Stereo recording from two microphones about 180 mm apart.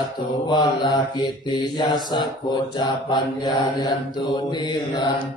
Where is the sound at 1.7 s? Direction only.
25° left (ahead or behind).